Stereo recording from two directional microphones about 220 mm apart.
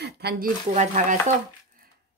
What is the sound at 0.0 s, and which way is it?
Speech, 45° right (ahead or behind).